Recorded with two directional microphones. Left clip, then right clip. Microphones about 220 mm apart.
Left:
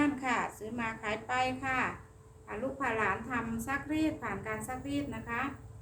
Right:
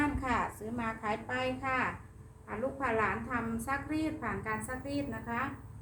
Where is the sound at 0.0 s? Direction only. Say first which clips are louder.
Left 1 dB; 15° left (ahead or behind).